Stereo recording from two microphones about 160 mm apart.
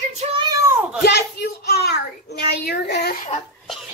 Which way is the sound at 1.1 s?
85° left.